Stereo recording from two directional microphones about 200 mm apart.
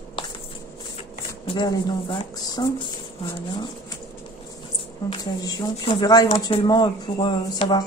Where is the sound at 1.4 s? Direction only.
25° left (ahead or behind).